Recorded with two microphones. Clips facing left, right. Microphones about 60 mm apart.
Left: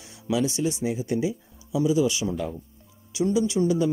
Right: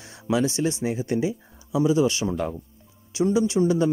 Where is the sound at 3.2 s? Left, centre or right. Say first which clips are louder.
Right 2 dB; right.